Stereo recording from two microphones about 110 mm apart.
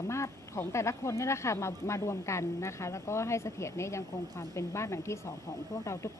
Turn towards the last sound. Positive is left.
turn(degrees=25)  # may be behind; listen again after turning